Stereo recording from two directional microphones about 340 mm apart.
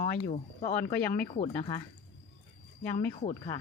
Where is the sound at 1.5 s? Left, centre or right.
Centre.